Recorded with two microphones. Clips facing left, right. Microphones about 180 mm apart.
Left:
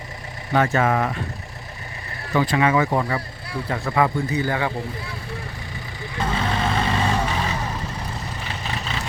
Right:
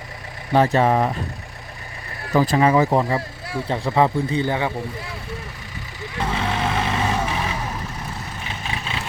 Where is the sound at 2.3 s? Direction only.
35° right (ahead or behind); by 4.7 s 20° right (ahead or behind).